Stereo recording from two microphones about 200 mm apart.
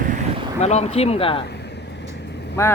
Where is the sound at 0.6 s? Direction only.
30° left (ahead or behind).